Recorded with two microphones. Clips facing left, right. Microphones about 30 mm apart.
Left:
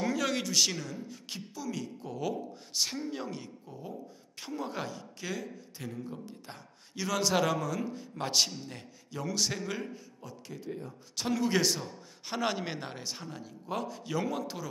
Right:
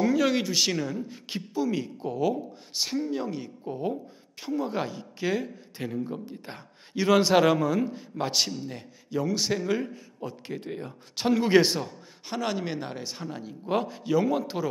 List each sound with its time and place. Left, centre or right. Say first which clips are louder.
0.0 s speech: right 7 dB; centre
2.1 s speech: right 7 dB; centre
3.6 s speech: right 12 dB; right
4.4 s speech: right 7 dB; centre
8.2 s speech: right 3 dB; centre
10.2 s speech: right 7 dB; right
11.1 s speech: right 8 dB; right
12.3 s speech: right 3 dB; centre; by 14.0 s right
14.0 s speech: right 9 dB; centre